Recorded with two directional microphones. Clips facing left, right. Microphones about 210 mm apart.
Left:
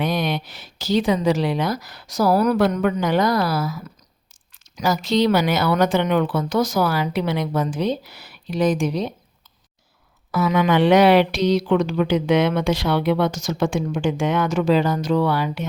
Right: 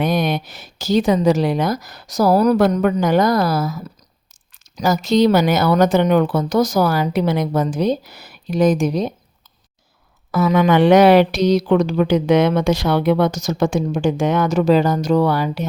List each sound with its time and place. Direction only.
0.0 s speech: 45° right (ahead or behind)
10.3 s speech: 45° right (ahead or behind)